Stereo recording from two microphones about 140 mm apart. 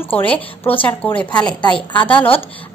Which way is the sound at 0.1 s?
10° left (ahead or behind).